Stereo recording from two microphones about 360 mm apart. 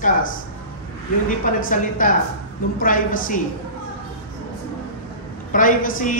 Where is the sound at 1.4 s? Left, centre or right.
Left.